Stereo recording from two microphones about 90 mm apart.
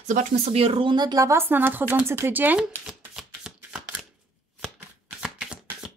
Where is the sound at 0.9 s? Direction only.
45° right (ahead or behind).